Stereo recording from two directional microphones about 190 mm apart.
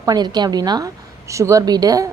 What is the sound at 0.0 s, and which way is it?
A woman's voice, 20° right (ahead or behind).